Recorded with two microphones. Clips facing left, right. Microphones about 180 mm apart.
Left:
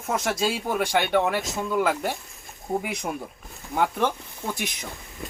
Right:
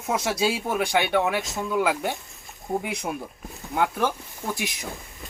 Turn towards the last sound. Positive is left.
turn(degrees=0)  # may be behind; listen again after turning